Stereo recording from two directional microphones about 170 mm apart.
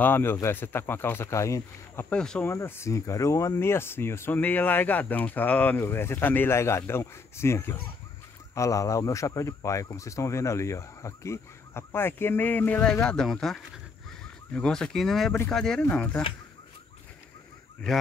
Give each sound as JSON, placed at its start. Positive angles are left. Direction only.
{"t": 0.0, "sound": "speech", "side_deg": 15}